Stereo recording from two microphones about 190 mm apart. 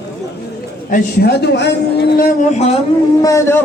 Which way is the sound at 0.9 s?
60° left (ahead or behind).